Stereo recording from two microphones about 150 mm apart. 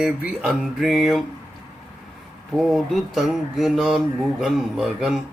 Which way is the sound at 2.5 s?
Centre (ahead or behind).